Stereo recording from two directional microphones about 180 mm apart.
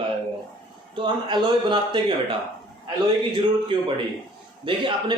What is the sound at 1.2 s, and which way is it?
Speech, 25° right (ahead or behind).